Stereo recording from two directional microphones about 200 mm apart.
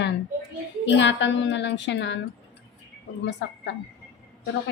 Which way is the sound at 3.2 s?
60° left (ahead or behind).